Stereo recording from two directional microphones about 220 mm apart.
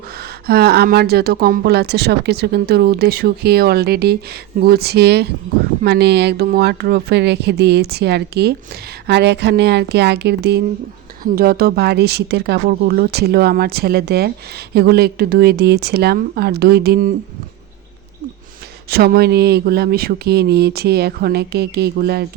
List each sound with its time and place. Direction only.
0.2 s speech: 45° right (ahead or behind)
18.9 s speech: 45° right (ahead or behind)